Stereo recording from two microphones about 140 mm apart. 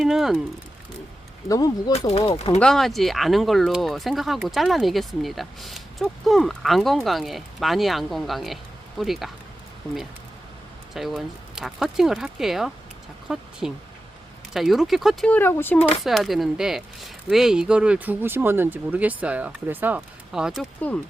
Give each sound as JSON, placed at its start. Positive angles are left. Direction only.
{"t": 0.0, "sound": "speech", "side_deg": -5}
{"t": 1.5, "sound": "speech", "side_deg": 25}
{"t": 1.9, "sound": "speech", "side_deg": 45}
{"t": 2.6, "sound": "speech", "side_deg": 0}
{"t": 10.9, "sound": "speech", "side_deg": 0}
{"t": 15.3, "sound": "speech", "side_deg": 15}
{"t": 16.0, "sound": "speech", "side_deg": 0}